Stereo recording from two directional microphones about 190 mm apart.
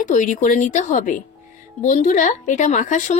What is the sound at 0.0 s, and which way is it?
A woman's voice, 40° left (ahead or behind).